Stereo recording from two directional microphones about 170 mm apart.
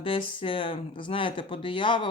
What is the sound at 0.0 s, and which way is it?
Speech, 30° left (ahead or behind).